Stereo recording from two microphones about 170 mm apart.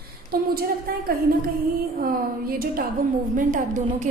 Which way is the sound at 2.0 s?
60° right (ahead or behind).